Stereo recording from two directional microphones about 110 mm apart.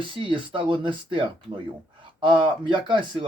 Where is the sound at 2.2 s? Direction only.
50° right (ahead or behind).